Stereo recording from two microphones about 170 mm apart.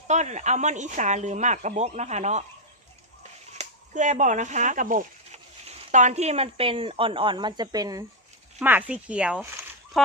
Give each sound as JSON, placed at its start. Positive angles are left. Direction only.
{"t": 0.1, "sound": "speech", "side_deg": -45}
{"t": 3.5, "sound": "speech", "side_deg": -45}
{"t": 8.5, "sound": "speech", "side_deg": -10}